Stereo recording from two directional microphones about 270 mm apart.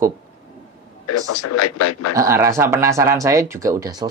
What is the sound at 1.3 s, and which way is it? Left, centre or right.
Speech, left.